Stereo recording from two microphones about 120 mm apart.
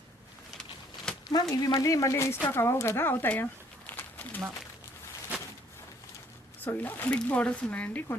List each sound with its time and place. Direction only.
1.3 s speech: 35° left (ahead or behind); by 3.4 s 15° left (ahead or behind)
3.8 s a sound: 15° left (ahead or behind)
6.7 s speech: 15° left (ahead or behind)